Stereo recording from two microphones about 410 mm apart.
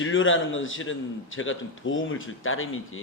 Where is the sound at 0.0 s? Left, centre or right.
Left.